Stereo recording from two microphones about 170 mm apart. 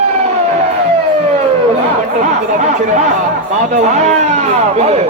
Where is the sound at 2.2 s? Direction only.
45° right (ahead or behind).